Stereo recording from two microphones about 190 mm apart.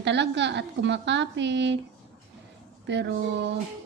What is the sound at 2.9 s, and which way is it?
Speech, 65° right (ahead or behind).